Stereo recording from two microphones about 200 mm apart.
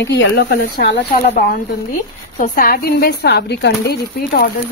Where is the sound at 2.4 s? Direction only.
45° left (ahead or behind).